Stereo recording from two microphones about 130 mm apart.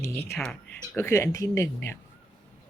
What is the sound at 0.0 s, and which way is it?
Speech, 15° left (ahead or behind).